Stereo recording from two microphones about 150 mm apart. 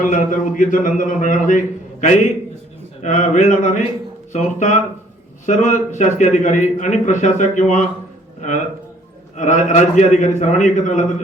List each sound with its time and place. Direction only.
0.0 s a man's voice: 60° left (ahead or behind)
9.3 s a man's voice: 55° left (ahead or behind)